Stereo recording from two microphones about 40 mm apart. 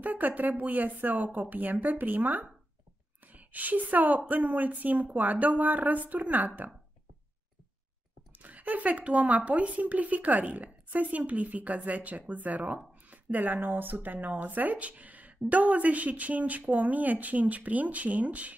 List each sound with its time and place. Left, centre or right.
0.0 s a woman's voice: right
8.3 s speech: right